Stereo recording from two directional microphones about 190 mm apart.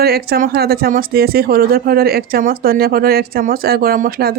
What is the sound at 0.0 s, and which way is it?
Speech, 55° right (ahead or behind).